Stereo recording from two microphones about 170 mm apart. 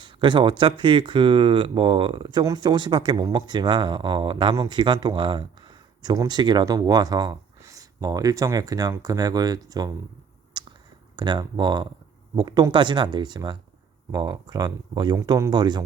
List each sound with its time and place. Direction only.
0.0 s speech: 30° right (ahead or behind)
10.5 s a sound: 30° right (ahead or behind)
11.2 s speech: 25° right (ahead or behind)